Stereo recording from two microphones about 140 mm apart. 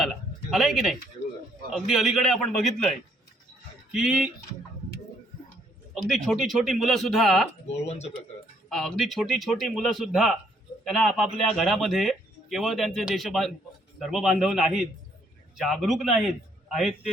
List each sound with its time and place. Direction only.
0.0 s a sound: centre (ahead or behind)
1.7 s a man's voice: centre (ahead or behind)
5.9 s a man's voice: centre (ahead or behind)
7.9 s speech: 50° left (ahead or behind)
8.7 s a man's voice: centre (ahead or behind)